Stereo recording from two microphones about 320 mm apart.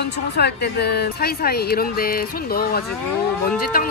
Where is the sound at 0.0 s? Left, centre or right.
Left.